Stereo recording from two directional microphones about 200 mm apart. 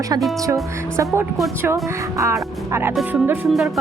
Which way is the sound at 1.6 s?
15° right (ahead or behind).